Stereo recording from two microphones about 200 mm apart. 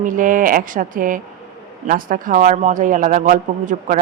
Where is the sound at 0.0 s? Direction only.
40° right (ahead or behind).